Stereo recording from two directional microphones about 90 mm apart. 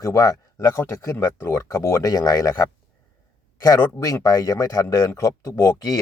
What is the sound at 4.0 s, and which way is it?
Speech, 40° left (ahead or behind).